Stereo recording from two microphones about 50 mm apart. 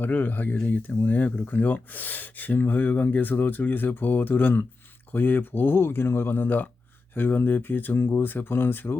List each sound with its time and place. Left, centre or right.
0.0 s speech: left
0.5 s speech: left
0.8 s speech: left